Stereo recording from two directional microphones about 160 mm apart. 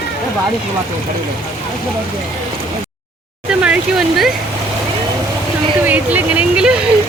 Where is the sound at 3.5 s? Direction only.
10° right (ahead or behind).